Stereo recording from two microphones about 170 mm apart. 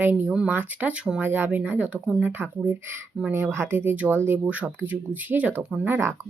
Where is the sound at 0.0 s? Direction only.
15° right (ahead or behind).